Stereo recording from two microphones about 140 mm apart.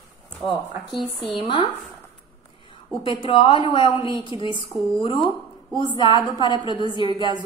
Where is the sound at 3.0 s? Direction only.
40° left (ahead or behind).